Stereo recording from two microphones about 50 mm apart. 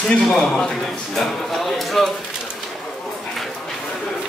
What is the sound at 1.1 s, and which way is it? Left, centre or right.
Speech, centre.